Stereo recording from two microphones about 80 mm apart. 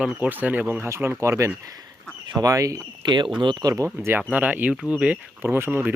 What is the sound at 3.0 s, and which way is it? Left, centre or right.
Speech, right.